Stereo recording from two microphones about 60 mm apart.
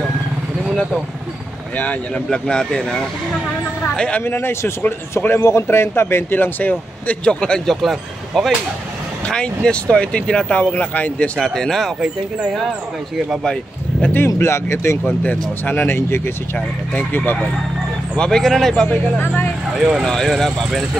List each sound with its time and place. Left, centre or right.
1.8 s speech: left
4.2 s speech: left
6.7 s speech: centre
7.6 s speech: centre
9.2 s speech: centre
11.3 s speech: centre
14.0 s speech: left
15.0 s speech: left
18.1 s speech: centre
19.2 s speech: left
19.7 s speech: centre
20.1 s speech: centre